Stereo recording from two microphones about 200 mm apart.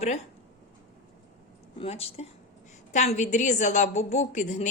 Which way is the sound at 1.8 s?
30° left (ahead or behind).